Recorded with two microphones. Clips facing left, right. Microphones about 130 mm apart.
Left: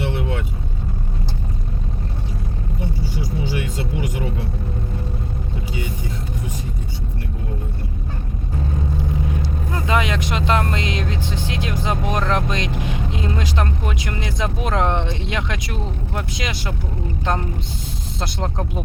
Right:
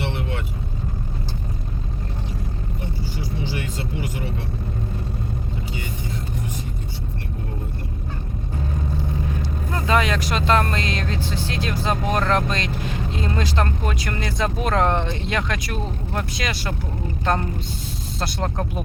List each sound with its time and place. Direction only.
9.8 s speech: 15° left (ahead or behind)
18.2 s speech: 20° left (ahead or behind)